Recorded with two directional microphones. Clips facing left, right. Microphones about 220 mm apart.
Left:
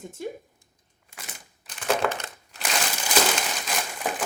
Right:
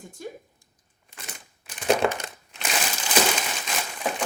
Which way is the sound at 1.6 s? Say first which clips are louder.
Right 3 dB; 10° right (ahead or behind).